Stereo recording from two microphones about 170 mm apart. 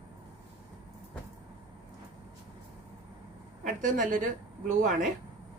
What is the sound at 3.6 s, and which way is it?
Speech, 50° right (ahead or behind).